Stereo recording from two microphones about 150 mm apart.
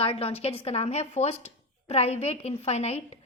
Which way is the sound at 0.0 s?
40° left (ahead or behind).